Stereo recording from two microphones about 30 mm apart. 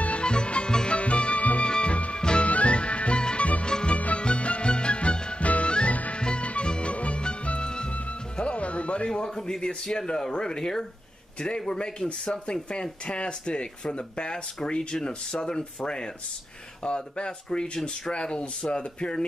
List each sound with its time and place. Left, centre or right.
0.2 s music: left
1.6 s music: left
2.4 s music: left
3.9 s music: left
5.4 s music: left
5.7 s music: left
7.4 s music: left
7.9 s music: left
9.1 s a man's voice: centre
9.6 s speech: left
13.0 s speech: left